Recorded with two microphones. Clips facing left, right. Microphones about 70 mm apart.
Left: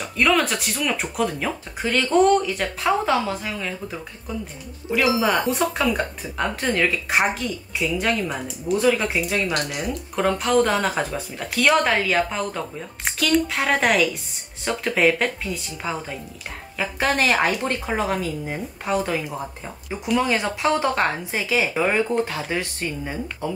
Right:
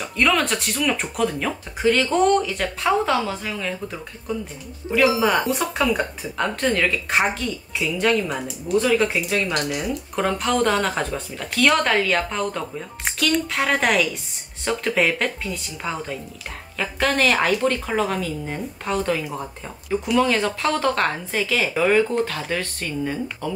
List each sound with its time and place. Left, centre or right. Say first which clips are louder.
0.0 s speech: even; centre